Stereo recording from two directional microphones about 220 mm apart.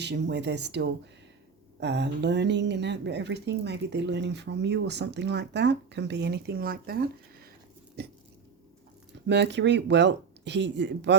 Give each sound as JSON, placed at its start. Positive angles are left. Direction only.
{"t": 0.0, "sound": "speech", "side_deg": -50}
{"t": 8.0, "sound": "dog", "side_deg": -50}
{"t": 9.2, "sound": "speech", "side_deg": -50}